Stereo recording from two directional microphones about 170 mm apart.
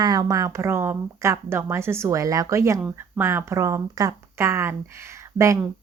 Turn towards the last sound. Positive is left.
turn(degrees=-20)  # may be behind; listen again after turning